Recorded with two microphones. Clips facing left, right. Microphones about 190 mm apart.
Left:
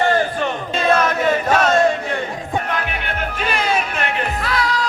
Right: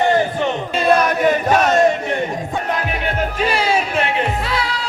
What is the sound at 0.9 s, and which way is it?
Crowd, 15° right (ahead or behind).